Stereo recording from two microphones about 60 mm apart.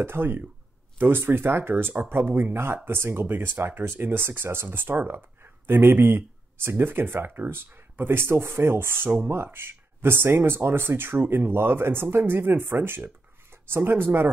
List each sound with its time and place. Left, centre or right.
0.0 s speech: right